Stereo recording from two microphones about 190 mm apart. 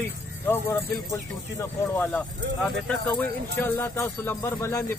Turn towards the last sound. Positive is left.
turn(degrees=15)  # may be behind; listen again after turning